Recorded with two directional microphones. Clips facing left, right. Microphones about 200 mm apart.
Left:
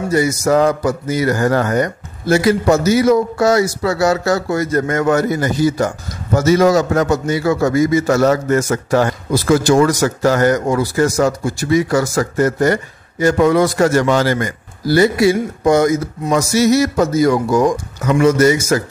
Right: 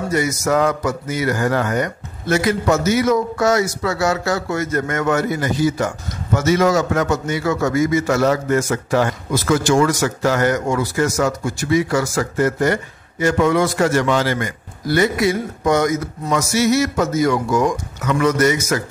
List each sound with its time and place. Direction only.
0.1 s a man's voice: 35° left (ahead or behind)